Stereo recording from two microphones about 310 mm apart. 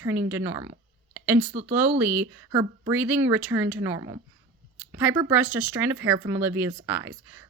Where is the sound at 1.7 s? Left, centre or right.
Centre.